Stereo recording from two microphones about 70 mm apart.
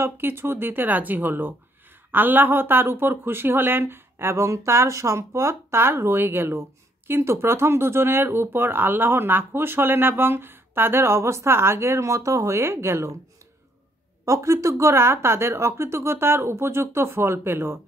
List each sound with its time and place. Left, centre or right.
0.0 s speech: right
14.2 s speech: right